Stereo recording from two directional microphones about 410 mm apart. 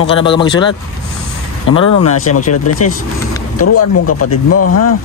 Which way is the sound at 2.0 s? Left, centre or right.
Left.